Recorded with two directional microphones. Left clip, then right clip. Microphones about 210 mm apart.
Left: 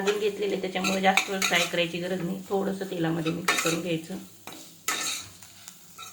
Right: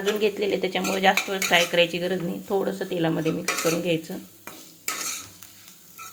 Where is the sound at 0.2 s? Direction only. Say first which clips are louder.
Right 4 dB; 35° right (ahead or behind).